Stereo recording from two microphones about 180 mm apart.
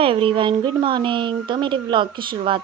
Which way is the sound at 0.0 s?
30° right (ahead or behind).